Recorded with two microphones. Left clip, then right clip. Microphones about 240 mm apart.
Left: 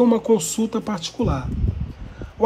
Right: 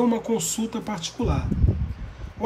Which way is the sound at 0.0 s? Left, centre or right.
Centre.